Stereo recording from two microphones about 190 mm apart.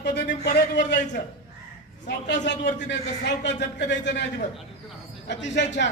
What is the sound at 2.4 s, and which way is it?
A man's voice, 65° left (ahead or behind).